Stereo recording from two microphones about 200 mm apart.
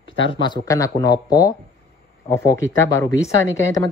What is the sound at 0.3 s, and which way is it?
Speech, 20° left (ahead or behind).